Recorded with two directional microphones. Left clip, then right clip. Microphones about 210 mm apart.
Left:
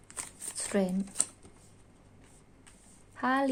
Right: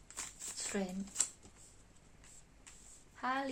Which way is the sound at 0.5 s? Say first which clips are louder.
Left 10 dB; 50° left (ahead or behind).